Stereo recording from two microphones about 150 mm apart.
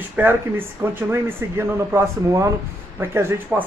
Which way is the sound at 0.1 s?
15° right (ahead or behind).